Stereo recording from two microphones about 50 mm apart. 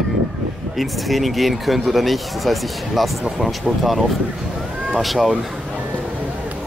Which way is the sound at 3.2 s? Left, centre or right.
Centre.